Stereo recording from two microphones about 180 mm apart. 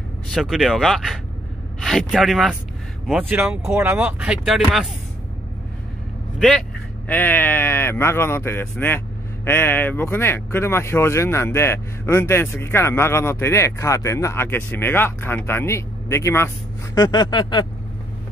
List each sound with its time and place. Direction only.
0.3 s speech: centre (ahead or behind)
7.1 s speech: 10° left (ahead or behind)
16.9 s a sound: 20° left (ahead or behind)